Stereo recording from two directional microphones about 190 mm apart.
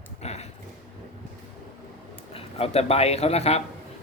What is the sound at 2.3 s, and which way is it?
A man's voice, 30° left (ahead or behind).